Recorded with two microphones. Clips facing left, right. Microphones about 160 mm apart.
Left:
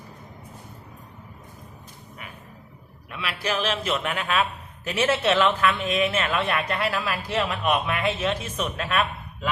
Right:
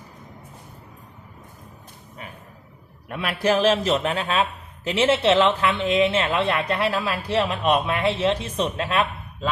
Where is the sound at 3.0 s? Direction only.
45° right (ahead or behind).